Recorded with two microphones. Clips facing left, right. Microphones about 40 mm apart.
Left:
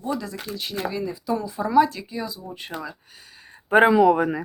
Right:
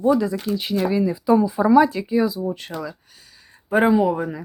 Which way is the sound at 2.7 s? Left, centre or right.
Centre.